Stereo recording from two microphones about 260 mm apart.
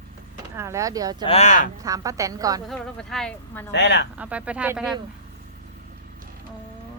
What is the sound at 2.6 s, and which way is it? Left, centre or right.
Speech, centre.